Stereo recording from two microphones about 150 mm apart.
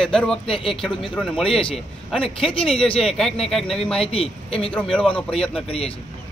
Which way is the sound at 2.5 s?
40° left (ahead or behind).